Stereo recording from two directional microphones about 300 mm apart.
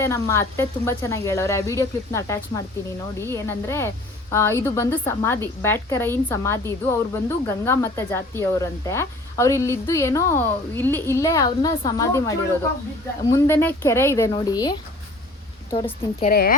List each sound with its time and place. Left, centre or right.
0.0 s a woman's voice: centre
16.2 s speech: left